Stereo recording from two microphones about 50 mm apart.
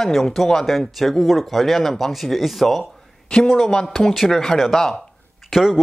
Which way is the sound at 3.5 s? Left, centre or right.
Centre.